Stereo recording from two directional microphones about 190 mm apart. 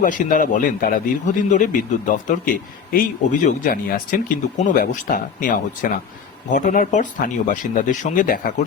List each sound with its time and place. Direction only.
0.0 s speech: 45° left (ahead or behind)